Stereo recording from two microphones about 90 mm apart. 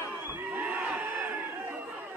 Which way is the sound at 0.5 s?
20° right (ahead or behind).